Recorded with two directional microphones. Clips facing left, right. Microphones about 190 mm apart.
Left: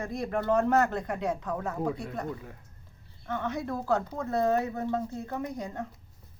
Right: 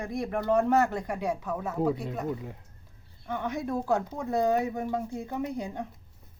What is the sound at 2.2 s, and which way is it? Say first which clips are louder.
Speech: right 4 dB; 20° right (ahead or behind).